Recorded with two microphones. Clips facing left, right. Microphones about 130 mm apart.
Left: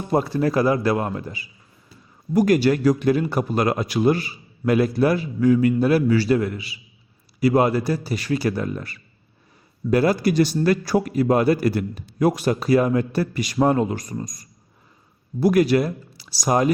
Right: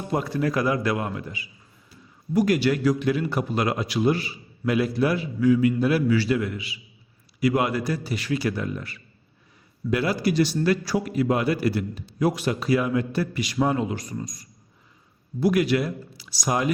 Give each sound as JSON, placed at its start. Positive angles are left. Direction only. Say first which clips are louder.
{"t": 0.1, "sound": "a man's voice", "louder": "left 5 dB", "side_deg": 35}